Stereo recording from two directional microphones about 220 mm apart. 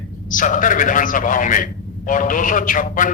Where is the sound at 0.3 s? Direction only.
35° left (ahead or behind).